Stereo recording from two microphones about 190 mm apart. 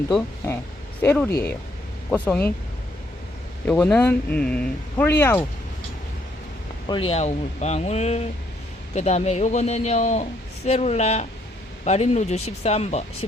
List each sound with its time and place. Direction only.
1.0 s speech: 10° left (ahead or behind)
3.7 s speech: 5° left (ahead or behind)
6.8 s speech: 25° left (ahead or behind)